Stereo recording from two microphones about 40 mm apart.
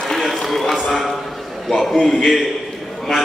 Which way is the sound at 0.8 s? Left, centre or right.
Centre.